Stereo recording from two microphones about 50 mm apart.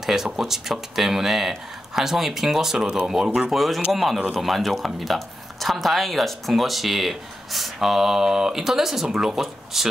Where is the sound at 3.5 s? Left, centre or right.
Centre.